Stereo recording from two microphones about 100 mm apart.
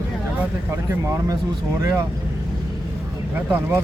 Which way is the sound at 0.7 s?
25° right (ahead or behind).